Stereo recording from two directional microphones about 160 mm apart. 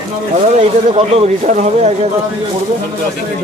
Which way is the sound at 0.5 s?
45° right (ahead or behind).